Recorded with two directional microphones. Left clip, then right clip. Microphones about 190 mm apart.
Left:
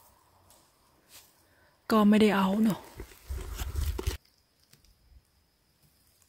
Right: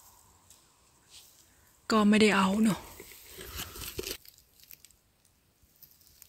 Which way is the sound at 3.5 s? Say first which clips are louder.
Right 1 dB; 25° left (ahead or behind).